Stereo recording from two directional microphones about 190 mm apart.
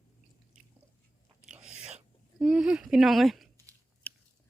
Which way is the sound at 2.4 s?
5° right (ahead or behind).